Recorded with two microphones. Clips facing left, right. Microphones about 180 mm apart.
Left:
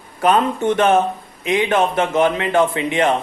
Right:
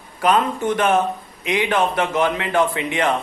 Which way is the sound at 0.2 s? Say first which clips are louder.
Left 2 dB; 25° left (ahead or behind).